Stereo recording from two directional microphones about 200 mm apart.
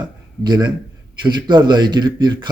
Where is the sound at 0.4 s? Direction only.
20° right (ahead or behind).